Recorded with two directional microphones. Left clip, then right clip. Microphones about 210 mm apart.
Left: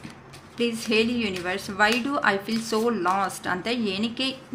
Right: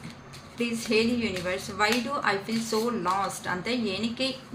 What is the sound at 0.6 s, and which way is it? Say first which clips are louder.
Speech: left 3 dB; 55° left (ahead or behind).